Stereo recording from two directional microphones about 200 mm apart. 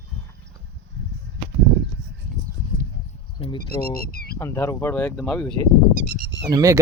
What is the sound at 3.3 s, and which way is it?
Speech, 25° left (ahead or behind).